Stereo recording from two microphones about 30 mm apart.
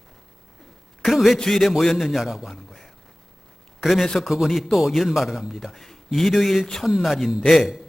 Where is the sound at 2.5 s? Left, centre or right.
Centre.